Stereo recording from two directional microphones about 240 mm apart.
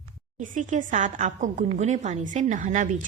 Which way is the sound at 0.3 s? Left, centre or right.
Right.